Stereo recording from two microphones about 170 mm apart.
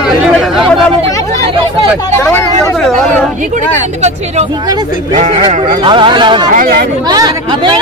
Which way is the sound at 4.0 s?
40° right (ahead or behind).